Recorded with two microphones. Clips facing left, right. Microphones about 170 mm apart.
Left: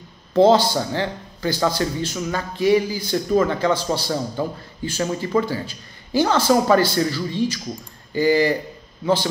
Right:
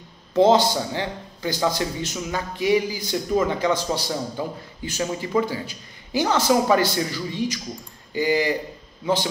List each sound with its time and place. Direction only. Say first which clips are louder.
0.4 s a man's voice: left 2 dB; 20° right (ahead or behind)